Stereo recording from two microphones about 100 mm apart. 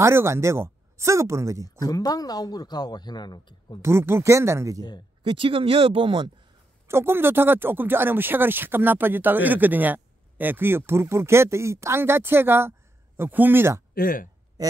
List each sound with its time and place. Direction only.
0.0 s speech: 25° right (ahead or behind)
1.8 s a man's voice: 40° left (ahead or behind)
3.8 s speech: 25° right (ahead or behind)
5.2 s speech: 60° right (ahead or behind)
6.9 s speech: 25° right (ahead or behind)